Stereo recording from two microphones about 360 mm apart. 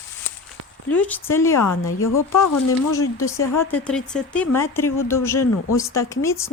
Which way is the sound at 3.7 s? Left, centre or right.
Centre.